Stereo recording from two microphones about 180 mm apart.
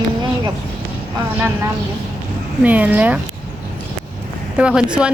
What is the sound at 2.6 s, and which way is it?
Speech, 10° right (ahead or behind).